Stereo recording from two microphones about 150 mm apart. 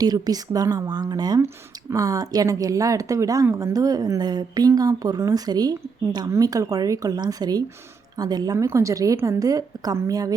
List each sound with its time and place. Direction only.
0.0 s speech: 25° right (ahead or behind)